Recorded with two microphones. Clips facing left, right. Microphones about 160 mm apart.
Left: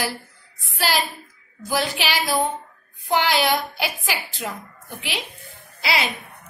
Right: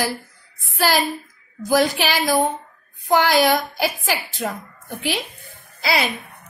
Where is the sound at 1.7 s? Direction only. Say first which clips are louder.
Right 6 dB; 45° right (ahead or behind).